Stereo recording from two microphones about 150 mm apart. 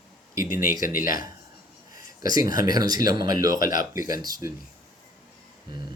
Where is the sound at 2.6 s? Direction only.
25° right (ahead or behind).